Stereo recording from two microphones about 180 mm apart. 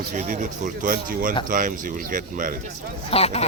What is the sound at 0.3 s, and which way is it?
Speech, 50° right (ahead or behind).